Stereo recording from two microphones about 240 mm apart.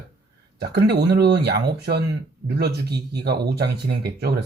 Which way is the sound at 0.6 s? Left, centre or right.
Right.